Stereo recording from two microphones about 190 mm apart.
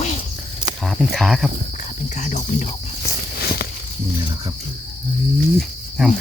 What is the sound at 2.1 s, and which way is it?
Speech, 40° left (ahead or behind).